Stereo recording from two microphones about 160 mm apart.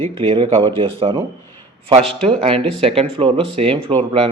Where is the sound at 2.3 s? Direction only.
35° right (ahead or behind).